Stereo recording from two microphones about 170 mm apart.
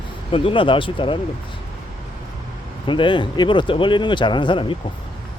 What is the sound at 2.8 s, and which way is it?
Speech, 30° left (ahead or behind).